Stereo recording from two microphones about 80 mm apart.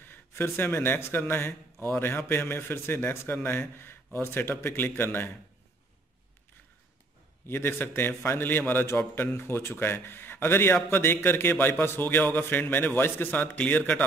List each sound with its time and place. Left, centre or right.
0.0 s a man's voice: left
7.4 s a man's voice: left